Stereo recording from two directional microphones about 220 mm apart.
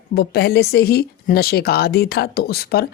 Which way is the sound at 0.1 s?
45° left (ahead or behind).